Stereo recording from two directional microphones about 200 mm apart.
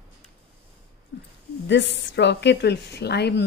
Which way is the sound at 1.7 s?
60° left (ahead or behind).